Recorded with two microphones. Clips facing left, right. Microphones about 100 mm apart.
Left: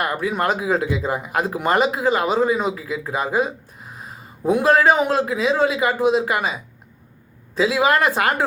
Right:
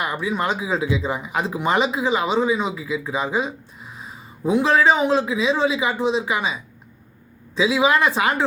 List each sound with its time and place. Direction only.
0.0 s speech: 55° left (ahead or behind)